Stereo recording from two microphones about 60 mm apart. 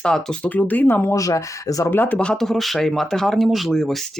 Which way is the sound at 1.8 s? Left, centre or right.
Left.